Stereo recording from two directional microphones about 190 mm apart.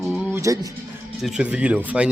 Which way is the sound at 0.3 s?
15° right (ahead or behind).